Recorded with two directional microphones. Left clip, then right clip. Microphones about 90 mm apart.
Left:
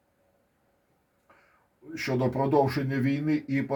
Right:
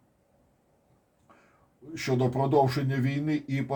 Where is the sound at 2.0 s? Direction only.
25° left (ahead or behind).